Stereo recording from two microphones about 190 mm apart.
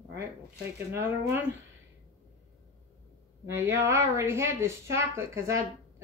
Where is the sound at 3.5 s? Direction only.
15° right (ahead or behind).